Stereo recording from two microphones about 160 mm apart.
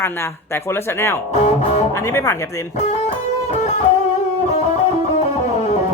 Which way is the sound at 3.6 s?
45° left (ahead or behind).